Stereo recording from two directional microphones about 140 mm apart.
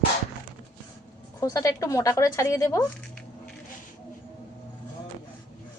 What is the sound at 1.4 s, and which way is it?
Speech, 25° left (ahead or behind).